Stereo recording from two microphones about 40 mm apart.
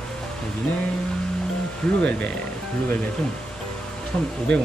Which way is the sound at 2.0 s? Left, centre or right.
Left.